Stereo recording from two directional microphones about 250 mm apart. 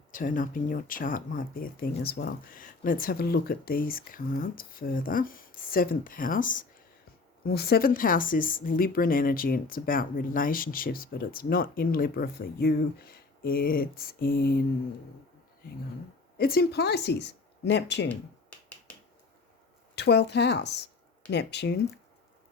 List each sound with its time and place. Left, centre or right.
0.1 s a woman's voice: left
16.4 s a woman's voice: left
20.0 s a woman's voice: left